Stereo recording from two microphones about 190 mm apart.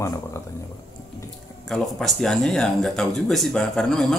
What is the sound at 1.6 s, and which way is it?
Speech, centre (ahead or behind).